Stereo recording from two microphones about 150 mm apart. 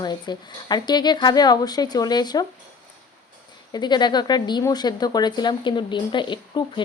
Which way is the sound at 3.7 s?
30° left (ahead or behind).